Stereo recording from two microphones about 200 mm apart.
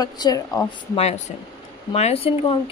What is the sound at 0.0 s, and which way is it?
A woman's voice, 20° left (ahead or behind).